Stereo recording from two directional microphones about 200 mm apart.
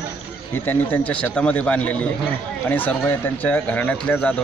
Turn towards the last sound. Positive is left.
turn(degrees=5)  # may be behind; listen again after turning